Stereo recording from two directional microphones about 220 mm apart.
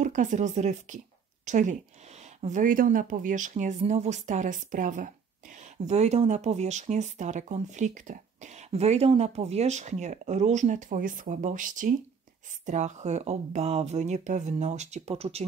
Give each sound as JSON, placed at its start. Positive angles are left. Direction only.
{"t": 0.0, "sound": "speech", "side_deg": -35}